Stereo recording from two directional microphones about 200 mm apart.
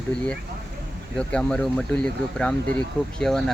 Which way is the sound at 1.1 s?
5° left (ahead or behind).